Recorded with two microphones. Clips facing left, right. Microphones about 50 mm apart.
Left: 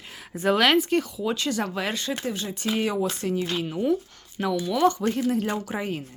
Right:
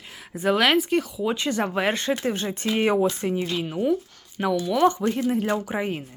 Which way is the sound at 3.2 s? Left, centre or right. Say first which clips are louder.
Right 1 dB; right.